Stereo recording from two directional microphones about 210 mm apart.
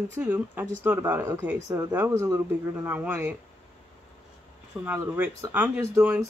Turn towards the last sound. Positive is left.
turn(degrees=-10)  # may be behind; listen again after turning